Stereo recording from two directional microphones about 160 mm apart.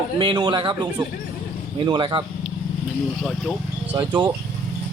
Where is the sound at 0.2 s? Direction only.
30° right (ahead or behind).